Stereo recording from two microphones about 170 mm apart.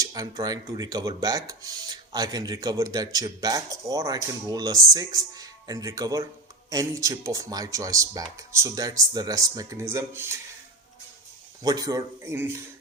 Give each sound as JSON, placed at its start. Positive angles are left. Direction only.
{"t": 0.0, "sound": "speech", "side_deg": -20}
{"t": 11.6, "sound": "speech", "side_deg": -20}